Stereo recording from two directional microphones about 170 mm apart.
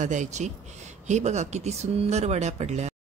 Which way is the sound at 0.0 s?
45° right (ahead or behind).